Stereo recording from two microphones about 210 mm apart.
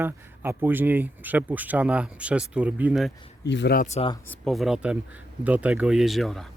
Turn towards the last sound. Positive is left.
turn(degrees=0)  # may be behind; listen again after turning